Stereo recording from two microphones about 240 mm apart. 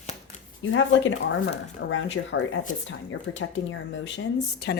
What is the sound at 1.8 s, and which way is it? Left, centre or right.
A woman's voice, left.